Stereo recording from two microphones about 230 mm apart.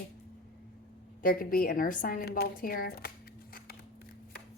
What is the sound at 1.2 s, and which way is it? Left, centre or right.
Speech, left.